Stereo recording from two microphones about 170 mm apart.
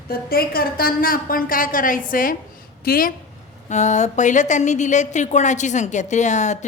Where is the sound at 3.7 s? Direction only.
45° left (ahead or behind).